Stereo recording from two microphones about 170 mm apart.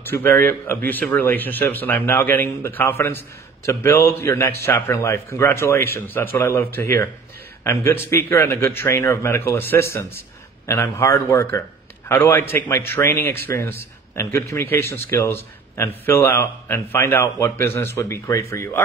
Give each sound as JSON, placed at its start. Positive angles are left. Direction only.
{"t": 0.1, "sound": "a man's voice", "side_deg": 10}